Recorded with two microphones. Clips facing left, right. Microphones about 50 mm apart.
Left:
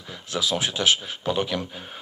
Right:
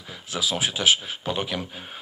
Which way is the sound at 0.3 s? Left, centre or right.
Centre.